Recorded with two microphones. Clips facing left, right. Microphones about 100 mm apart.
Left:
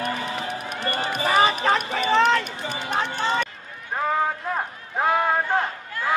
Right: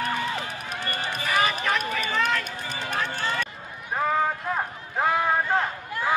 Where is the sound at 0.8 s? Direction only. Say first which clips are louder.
Left 6 dB; 30° left (ahead or behind).